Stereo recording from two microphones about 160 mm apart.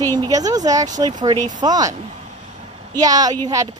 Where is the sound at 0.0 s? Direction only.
25° right (ahead or behind).